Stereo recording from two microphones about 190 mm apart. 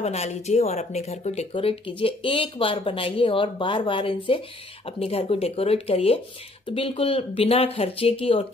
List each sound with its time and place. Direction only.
0.0 s speech: 35° left (ahead or behind)